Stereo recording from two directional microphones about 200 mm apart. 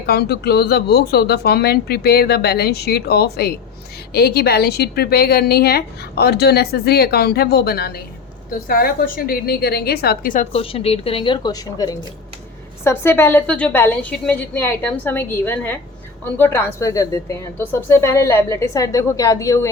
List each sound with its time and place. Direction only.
0.0 s a woman's voice: 55° left (ahead or behind); by 19.6 s 15° left (ahead or behind)